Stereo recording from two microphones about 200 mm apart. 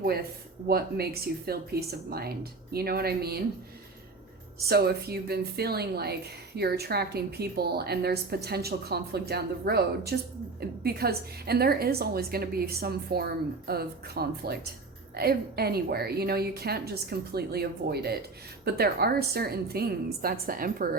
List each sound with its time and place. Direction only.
0.0 s a woman's voice: 50° right (ahead or behind)
4.7 s a woman's voice: 50° right (ahead or behind)